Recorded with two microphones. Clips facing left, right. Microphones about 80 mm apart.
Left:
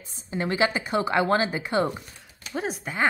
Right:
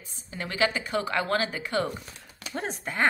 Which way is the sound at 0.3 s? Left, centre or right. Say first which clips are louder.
Left 3 dB; left.